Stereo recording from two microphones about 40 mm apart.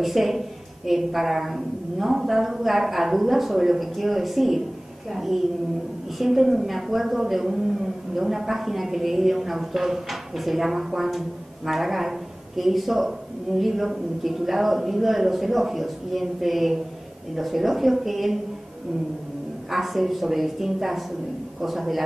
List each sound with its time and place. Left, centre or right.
0.0 s a woman's voice: centre
19.7 s a woman's voice: centre